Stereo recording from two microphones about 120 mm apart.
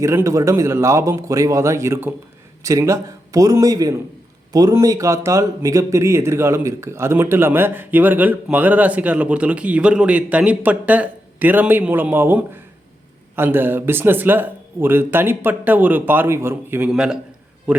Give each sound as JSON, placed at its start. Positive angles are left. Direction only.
{"t": 0.0, "sound": "a man's voice", "side_deg": -25}
{"t": 16.9, "sound": "a man's voice", "side_deg": -5}